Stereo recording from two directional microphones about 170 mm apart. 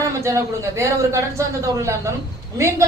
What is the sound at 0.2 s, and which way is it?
A woman's voice, 15° right (ahead or behind).